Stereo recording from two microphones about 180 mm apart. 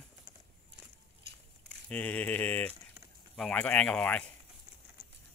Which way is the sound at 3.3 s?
5° left (ahead or behind).